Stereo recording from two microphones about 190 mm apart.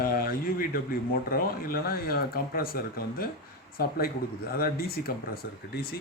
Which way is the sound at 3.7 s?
50° left (ahead or behind).